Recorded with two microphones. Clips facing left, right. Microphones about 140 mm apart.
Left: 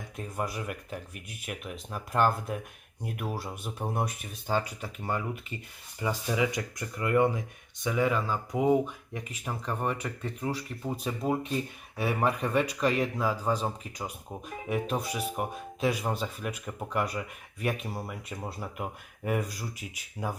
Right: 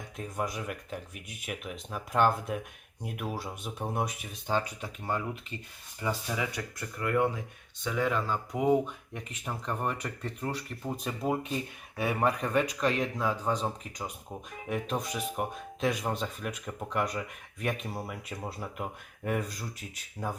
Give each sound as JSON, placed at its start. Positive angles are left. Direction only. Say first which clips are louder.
{"t": 0.2, "sound": "speech", "louder": "even", "side_deg": 0}